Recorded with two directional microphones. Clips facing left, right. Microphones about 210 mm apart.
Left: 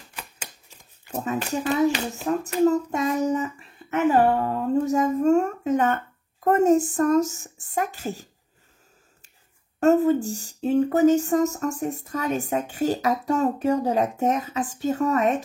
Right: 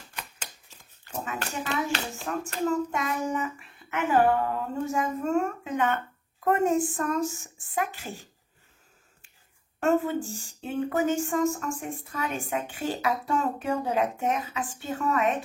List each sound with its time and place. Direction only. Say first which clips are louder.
1.5 s child singing: left 9 dB; 40° left (ahead or behind)
9.8 s child singing: left 7 dB; 40° left (ahead or behind)